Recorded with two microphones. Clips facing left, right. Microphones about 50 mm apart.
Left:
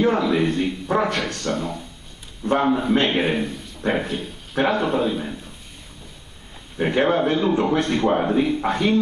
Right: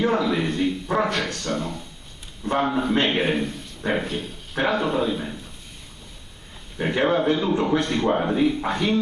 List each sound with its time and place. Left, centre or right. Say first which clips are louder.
0.0 s a man's voice: left 3 dB; centre
6.8 s a man's voice: left 2 dB; centre